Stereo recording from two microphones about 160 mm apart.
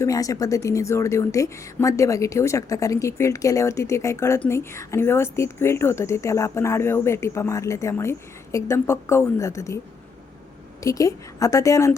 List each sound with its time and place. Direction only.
0.0 s a woman's voice: 20° left (ahead or behind)
10.8 s a woman's voice: 20° left (ahead or behind)